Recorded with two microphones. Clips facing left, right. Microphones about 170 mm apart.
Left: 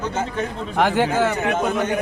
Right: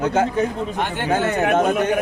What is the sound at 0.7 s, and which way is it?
Speech, 90° left.